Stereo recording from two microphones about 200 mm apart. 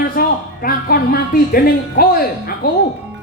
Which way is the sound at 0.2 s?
50° left (ahead or behind).